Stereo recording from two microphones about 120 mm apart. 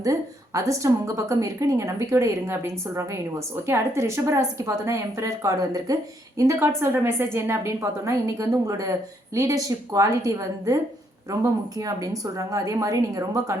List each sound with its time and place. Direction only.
0.0 s a woman's voice: 30° right (ahead or behind)
11.8 s a woman's voice: 30° right (ahead or behind)